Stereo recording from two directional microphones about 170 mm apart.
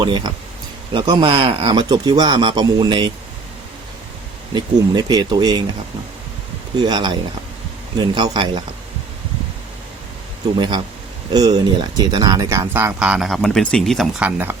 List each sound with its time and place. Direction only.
0.0 s speech: 25° right (ahead or behind)
4.5 s speech: 25° right (ahead or behind)
6.7 s speech: 25° right (ahead or behind)
10.6 s speech: 25° right (ahead or behind); by 14.5 s 10° right (ahead or behind)